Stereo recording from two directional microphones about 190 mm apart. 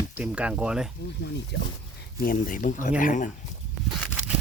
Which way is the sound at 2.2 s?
50° left (ahead or behind).